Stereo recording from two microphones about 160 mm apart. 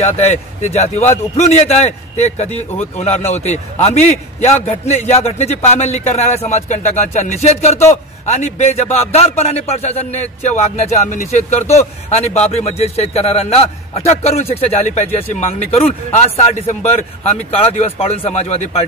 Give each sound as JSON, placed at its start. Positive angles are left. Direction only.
{"t": 0.0, "sound": "a man's voice", "side_deg": 45}
{"t": 16.6, "sound": "speech", "side_deg": 45}